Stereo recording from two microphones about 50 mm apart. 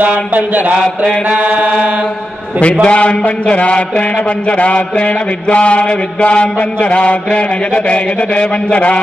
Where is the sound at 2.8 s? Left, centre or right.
Left.